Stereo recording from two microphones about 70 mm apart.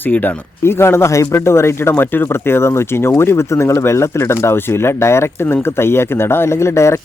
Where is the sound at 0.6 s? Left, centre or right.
Left.